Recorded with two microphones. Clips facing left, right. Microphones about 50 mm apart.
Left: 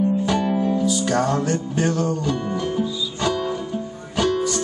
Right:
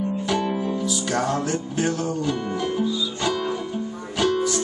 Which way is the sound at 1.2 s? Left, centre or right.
Centre.